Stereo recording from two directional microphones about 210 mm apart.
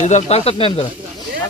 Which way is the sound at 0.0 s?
35° left (ahead or behind).